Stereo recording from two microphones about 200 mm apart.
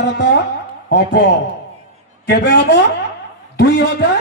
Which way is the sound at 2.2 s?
60° left (ahead or behind).